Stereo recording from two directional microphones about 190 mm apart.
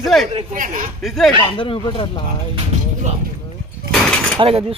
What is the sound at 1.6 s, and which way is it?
Speech, 25° left (ahead or behind).